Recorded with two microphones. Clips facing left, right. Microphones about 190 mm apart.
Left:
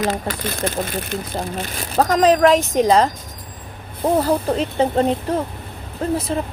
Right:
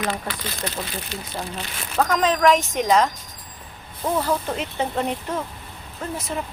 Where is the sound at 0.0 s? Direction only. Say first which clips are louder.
Left 5 dB; 45° left (ahead or behind).